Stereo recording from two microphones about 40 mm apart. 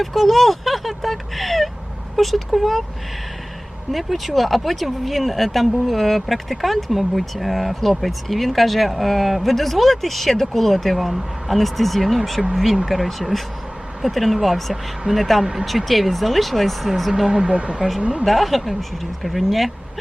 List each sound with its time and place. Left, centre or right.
0.0 s speech: centre
3.9 s speech: centre
17.1 s speech: centre
17.4 s speech: right
18.3 s speech: centre